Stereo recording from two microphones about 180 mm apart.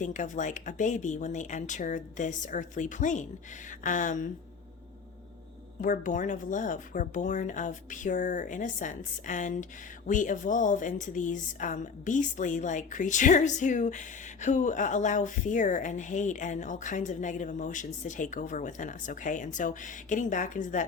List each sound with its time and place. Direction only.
0.0 s speech: 45° left (ahead or behind)
5.8 s speech: 45° left (ahead or behind)